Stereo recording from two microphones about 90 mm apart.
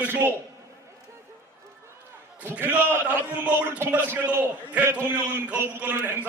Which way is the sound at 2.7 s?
20° right (ahead or behind).